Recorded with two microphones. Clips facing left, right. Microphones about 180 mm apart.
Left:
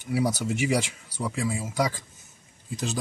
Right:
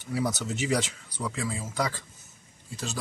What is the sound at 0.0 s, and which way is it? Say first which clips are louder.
Speech: left 3 dB; 10° left (ahead or behind).